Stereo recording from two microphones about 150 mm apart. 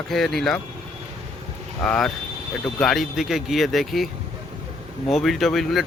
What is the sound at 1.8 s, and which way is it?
Speech, 5° left (ahead or behind).